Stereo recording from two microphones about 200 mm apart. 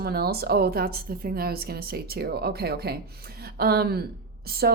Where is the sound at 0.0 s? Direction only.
50° right (ahead or behind).